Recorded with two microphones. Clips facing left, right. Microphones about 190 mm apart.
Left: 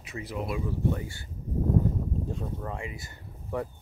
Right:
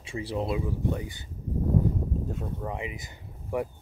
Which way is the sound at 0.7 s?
15° right (ahead or behind).